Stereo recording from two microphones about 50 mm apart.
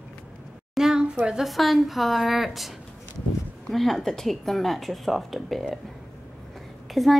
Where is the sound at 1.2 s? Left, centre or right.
Centre.